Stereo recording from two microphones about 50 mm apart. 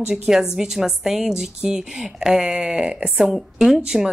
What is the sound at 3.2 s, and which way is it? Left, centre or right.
Speech, centre.